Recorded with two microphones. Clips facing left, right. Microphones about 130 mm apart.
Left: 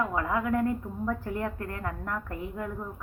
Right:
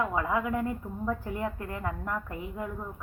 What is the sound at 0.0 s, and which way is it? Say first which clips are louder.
A woman's voice: even; 10° right (ahead or behind).